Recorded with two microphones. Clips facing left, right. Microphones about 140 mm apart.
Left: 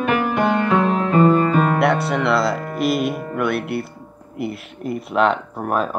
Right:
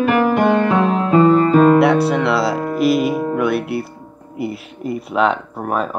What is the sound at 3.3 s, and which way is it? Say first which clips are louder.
Music: right 3 dB; centre (ahead or behind).